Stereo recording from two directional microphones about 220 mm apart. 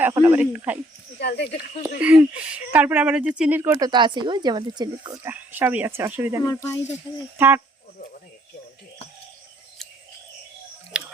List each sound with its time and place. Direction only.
0.0 s speech: 10° right (ahead or behind)
1.2 s speech: 50° left (ahead or behind)
1.8 s speech: 5° right (ahead or behind)
6.4 s speech: 15° left (ahead or behind)
7.3 s speech: 10° right (ahead or behind)
10.9 s a sound: 5° right (ahead or behind)